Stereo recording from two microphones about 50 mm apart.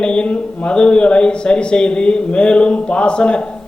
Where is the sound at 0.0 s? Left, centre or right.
Centre.